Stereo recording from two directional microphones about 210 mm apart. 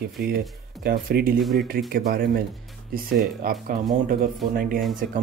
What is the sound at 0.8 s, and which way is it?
Speech, 45° right (ahead or behind).